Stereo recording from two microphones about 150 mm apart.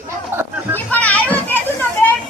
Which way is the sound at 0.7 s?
10° left (ahead or behind).